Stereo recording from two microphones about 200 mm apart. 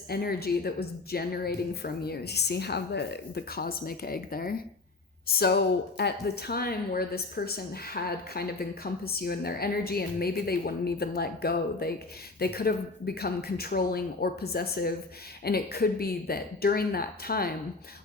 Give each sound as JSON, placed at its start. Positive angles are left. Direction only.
{"t": 0.1, "sound": "speech", "side_deg": 50}